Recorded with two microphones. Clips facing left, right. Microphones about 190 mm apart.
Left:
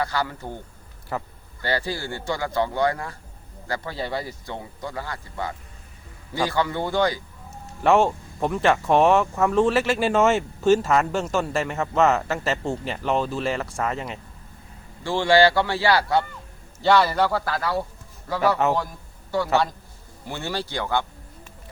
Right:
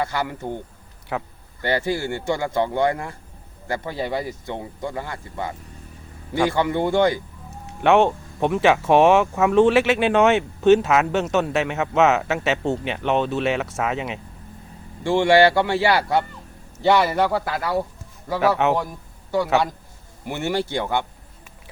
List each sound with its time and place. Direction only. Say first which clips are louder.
0.0 s speech: right 1 dB; 20° right (ahead or behind)
1.1 s speech: right 2 dB; centre (ahead or behind)
1.6 s speech: right 4 dB; 20° right (ahead or behind)
7.5 s speech: right 2 dB; centre (ahead or behind)
15.0 s speech: right 3 dB; 20° right (ahead or behind)
18.3 s speech: right 2 dB; centre (ahead or behind)
20.2 s speech: right 6 dB; 20° right (ahead or behind)